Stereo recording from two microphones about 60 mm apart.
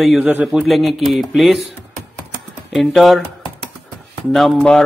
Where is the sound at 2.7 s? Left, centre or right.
Centre.